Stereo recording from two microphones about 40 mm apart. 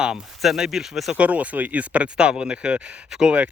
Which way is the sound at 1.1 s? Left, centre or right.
Right.